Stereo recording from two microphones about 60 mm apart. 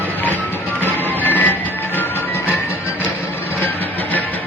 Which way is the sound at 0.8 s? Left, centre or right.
Left.